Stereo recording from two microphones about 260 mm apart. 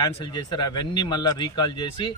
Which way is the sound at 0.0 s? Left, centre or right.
Centre.